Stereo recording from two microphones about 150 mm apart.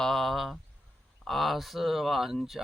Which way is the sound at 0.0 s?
Centre (ahead or behind).